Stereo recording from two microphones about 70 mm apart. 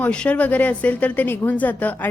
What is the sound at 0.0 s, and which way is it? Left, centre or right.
A woman's voice, centre.